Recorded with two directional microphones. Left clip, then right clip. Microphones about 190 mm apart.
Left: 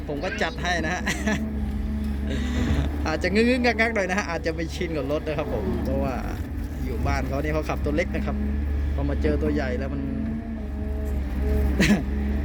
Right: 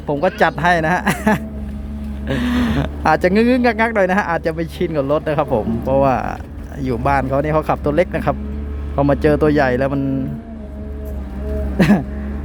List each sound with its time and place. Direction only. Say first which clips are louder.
0.1 s speech: right 12 dB; 45° right (ahead or behind)
11.8 s speech: right 7 dB; 40° right (ahead or behind)